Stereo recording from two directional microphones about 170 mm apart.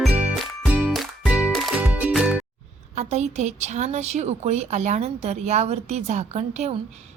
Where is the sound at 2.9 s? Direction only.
40° right (ahead or behind).